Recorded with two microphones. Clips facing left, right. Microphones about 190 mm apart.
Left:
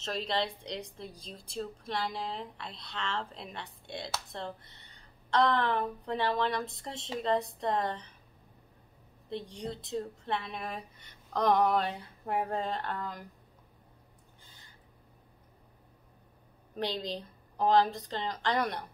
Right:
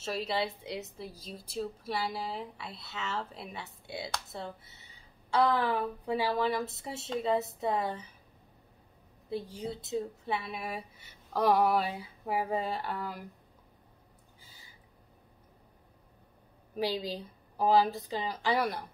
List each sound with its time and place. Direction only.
0.0 s a woman's voice: 5° right (ahead or behind)
9.3 s a woman's voice: 5° right (ahead or behind)
14.4 s owl: 5° right (ahead or behind)
16.7 s a woman's voice: 5° right (ahead or behind)